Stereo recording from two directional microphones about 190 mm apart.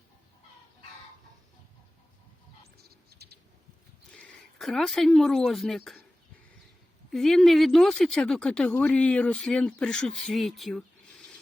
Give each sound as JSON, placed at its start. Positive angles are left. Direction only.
{"t": 2.7, "sound": "bird", "side_deg": -55}
{"t": 4.1, "sound": "speech", "side_deg": 5}
{"t": 7.1, "sound": "speech", "side_deg": 0}